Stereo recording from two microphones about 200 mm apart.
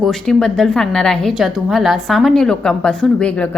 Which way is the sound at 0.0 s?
5° left (ahead or behind).